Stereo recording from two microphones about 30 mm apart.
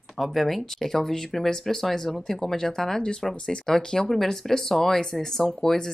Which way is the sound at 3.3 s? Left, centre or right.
Left.